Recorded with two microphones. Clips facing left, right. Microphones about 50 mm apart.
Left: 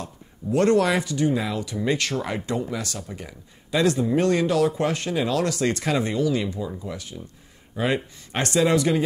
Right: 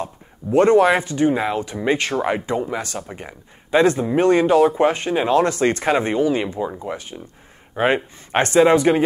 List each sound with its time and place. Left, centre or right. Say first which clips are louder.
0.0 s speech: right 5 dB; right